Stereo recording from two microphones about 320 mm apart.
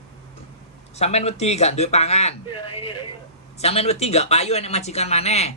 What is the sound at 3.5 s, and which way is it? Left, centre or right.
Speech, centre.